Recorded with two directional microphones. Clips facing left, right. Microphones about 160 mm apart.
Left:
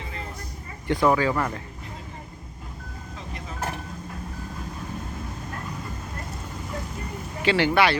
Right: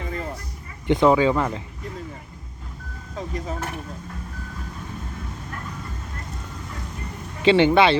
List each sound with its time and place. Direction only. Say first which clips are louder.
0.9 s speech: right 4 dB; 20° right (ahead or behind)
3.2 s vehicle: right 10 dB; 40° right (ahead or behind)
7.4 s speech: right 5 dB; 25° right (ahead or behind)